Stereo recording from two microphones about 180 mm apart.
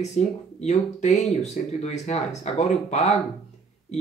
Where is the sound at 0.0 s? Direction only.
40° left (ahead or behind).